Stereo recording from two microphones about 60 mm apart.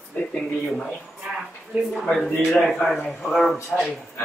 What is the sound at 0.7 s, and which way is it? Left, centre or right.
Speech, centre.